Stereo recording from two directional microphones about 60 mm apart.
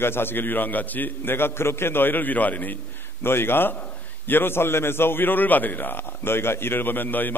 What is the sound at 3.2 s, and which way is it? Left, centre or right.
A man's voice, left.